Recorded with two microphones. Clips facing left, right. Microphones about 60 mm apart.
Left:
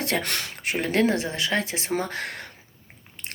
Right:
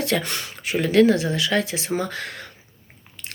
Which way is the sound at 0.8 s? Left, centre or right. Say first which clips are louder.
Right 6 dB; left.